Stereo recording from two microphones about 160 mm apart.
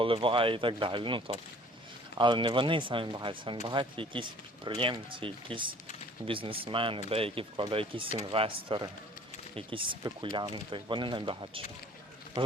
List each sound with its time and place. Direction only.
0.0 s speech: 35° right (ahead or behind)